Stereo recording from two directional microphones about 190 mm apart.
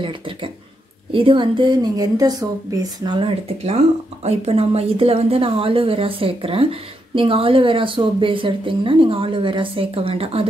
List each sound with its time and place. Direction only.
1.1 s speech: 25° right (ahead or behind)